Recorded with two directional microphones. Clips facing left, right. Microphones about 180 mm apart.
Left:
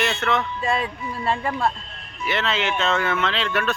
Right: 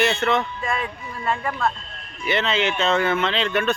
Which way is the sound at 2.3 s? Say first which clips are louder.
Right 2 dB; centre (ahead or behind).